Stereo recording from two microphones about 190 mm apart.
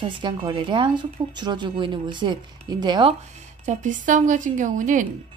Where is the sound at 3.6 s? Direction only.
40° right (ahead or behind).